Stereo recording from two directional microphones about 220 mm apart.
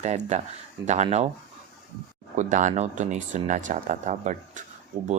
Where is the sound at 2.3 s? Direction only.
35° right (ahead or behind).